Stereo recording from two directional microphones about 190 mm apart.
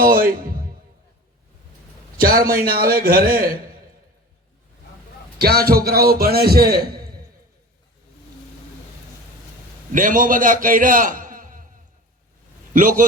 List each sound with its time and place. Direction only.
0.0 s a man's voice: 50° right (ahead or behind)
2.2 s a man's voice: 50° right (ahead or behind)
5.4 s a man's voice: 55° right (ahead or behind)
9.9 s a man's voice: 45° right (ahead or behind)
12.7 s a man's voice: 45° right (ahead or behind)